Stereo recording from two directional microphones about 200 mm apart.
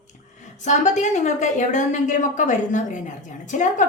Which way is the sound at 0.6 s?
35° left (ahead or behind).